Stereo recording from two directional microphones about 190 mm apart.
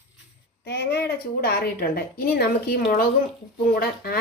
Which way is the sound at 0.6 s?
60° left (ahead or behind).